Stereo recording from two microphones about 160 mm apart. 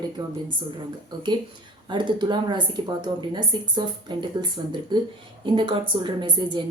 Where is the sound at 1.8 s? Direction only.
30° right (ahead or behind).